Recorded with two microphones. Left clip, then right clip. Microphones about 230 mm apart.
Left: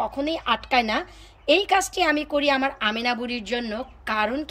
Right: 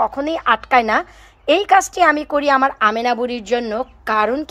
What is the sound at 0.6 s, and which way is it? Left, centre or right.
A woman's voice, centre.